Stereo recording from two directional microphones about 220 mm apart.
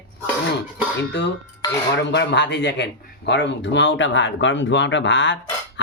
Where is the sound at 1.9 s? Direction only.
50° left (ahead or behind).